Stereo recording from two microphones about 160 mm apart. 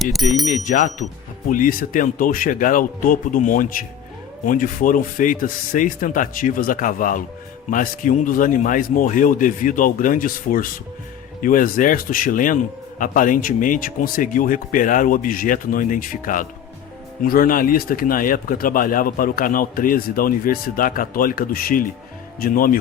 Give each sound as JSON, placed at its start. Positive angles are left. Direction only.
{"t": 0.0, "sound": "bell", "side_deg": 0}
{"t": 0.4, "sound": "bell", "side_deg": 50}
{"t": 1.5, "sound": "speech", "side_deg": 55}